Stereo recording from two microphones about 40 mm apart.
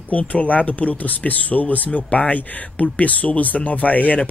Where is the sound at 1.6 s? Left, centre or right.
Left.